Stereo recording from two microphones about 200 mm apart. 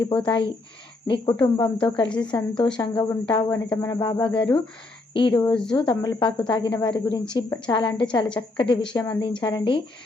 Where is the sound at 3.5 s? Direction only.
10° left (ahead or behind).